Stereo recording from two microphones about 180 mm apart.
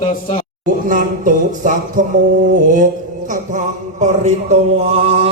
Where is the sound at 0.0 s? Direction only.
45° left (ahead or behind).